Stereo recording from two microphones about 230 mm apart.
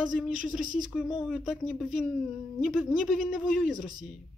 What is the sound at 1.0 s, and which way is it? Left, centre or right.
Speech, centre.